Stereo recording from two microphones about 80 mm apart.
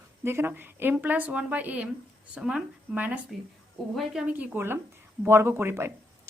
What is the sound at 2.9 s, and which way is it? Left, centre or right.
Speech, centre.